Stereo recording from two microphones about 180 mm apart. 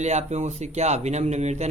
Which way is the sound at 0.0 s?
40° right (ahead or behind).